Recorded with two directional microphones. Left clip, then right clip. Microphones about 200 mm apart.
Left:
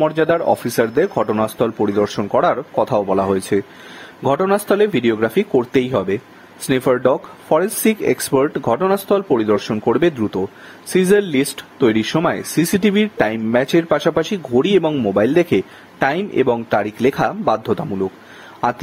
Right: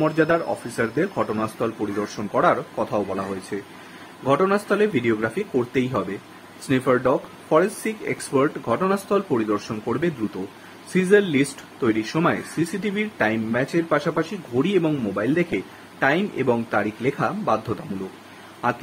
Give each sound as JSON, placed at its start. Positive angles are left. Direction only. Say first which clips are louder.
{"t": 0.0, "sound": "speech", "louder": "left 5 dB", "side_deg": 40}